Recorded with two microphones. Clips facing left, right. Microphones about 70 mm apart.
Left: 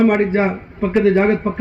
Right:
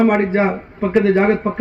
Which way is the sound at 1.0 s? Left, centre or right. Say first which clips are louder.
Left 1 dB; right.